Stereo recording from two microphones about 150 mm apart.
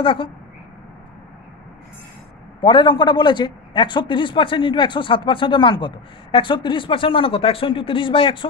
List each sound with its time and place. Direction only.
0.0 s a man's voice: 35° left (ahead or behind)
2.6 s a man's voice: 35° left (ahead or behind)